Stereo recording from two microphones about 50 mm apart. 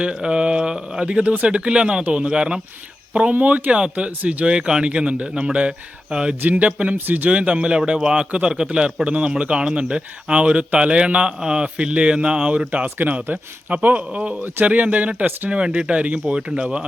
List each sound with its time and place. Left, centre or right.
0.0 s speech: centre
6.4 s speech: right
6.7 s speech: right
6.9 s speech: right
7.3 s speech: right
13.0 s speech: right